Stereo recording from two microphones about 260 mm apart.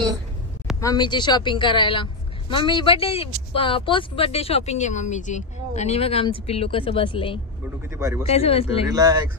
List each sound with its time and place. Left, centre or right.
0.7 s speech: centre
8.9 s speech: centre